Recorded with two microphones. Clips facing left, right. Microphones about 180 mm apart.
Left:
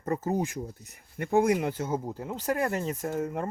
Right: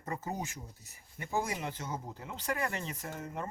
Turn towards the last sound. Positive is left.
turn(degrees=50)  # may be behind; listen again after turning